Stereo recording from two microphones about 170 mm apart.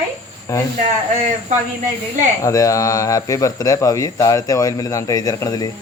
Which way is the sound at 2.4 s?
20° left (ahead or behind).